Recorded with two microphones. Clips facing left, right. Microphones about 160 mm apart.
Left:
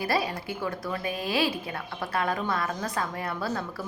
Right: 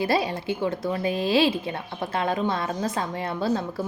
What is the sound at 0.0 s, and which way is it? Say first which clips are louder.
A woman's voice: right 4 dB; 25° right (ahead or behind).